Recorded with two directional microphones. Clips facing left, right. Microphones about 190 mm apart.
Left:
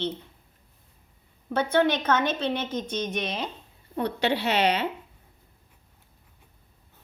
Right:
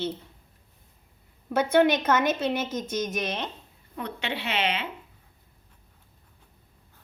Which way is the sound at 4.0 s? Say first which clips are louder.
Left 7 dB; 40° left (ahead or behind).